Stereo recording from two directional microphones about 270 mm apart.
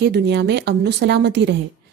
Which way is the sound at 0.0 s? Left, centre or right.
Right.